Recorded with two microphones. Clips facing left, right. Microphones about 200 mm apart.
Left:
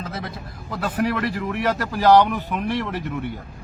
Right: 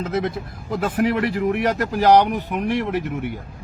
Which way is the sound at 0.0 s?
25° right (ahead or behind).